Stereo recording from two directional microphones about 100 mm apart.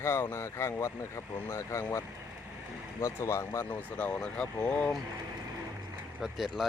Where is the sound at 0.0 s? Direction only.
25° left (ahead or behind).